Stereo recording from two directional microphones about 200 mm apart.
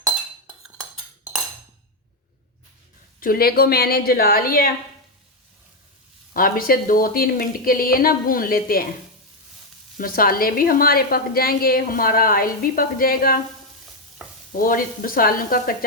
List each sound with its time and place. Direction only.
3.2 s a woman's voice: 45° left (ahead or behind)
6.3 s a woman's voice: 45° left (ahead or behind)
10.0 s a woman's voice: 45° left (ahead or behind)
14.5 s a woman's voice: 45° left (ahead or behind)